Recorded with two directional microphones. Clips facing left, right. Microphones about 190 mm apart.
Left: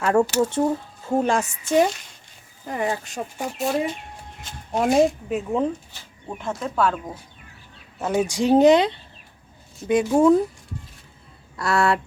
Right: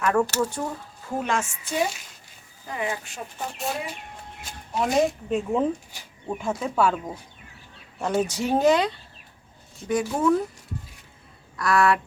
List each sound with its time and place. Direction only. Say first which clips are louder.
0.0 s speech: left 4 dB; 25° left (ahead or behind)
2.7 s speech: left 5 dB; 40° left (ahead or behind)
4.8 s speech: left 4 dB; centre (ahead or behind)
5.9 s speech: right 3 dB; 10° right (ahead or behind)
7.9 s speech: left 2 dB; 5° left (ahead or behind); by 10.3 s 25° left (ahead or behind)
11.5 s speech: even; 25° left (ahead or behind)